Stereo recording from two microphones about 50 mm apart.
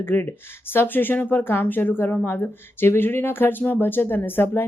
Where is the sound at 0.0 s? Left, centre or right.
Left.